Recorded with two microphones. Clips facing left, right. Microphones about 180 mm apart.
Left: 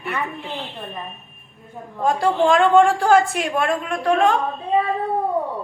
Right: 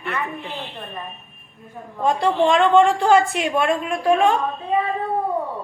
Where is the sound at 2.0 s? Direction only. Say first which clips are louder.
Even; centre (ahead or behind).